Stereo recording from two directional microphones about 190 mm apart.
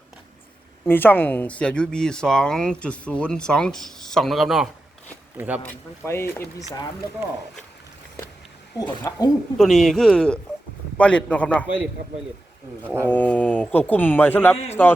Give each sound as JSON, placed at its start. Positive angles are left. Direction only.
{"t": 0.9, "sound": "speech", "side_deg": 10}
{"t": 5.6, "sound": "speech", "side_deg": 10}
{"t": 8.8, "sound": "speech", "side_deg": 20}
{"t": 9.6, "sound": "speech", "side_deg": 0}
{"t": 12.8, "sound": "speech", "side_deg": -10}
{"t": 13.1, "sound": "speech", "side_deg": 10}